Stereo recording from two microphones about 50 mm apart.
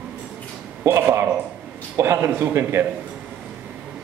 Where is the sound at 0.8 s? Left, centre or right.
Right.